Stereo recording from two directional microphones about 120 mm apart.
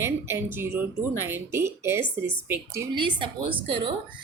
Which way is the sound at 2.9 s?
45° right (ahead or behind).